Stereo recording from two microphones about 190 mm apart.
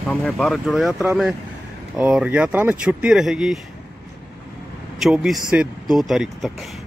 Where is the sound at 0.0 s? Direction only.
5° left (ahead or behind).